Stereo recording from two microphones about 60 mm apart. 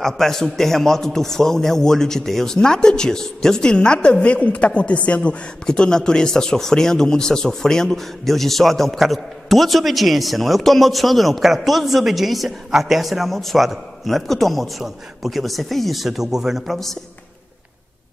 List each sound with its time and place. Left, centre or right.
0.0 s a man's voice: centre
16.7 s a man's voice: centre